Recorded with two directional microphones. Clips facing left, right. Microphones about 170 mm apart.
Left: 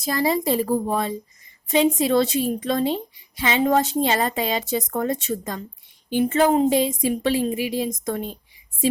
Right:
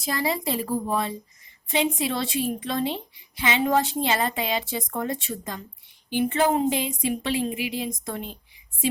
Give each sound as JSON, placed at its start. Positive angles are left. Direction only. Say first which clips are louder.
{"t": 0.0, "sound": "a woman's voice", "louder": "left 5 dB", "side_deg": 40}